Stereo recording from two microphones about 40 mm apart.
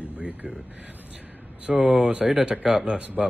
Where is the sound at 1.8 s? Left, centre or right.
Right.